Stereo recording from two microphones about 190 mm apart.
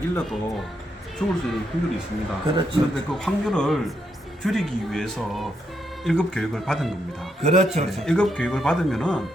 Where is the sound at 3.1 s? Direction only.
Centre (ahead or behind).